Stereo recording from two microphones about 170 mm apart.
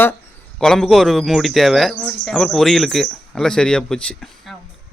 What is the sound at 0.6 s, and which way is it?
Speech, 5° left (ahead or behind).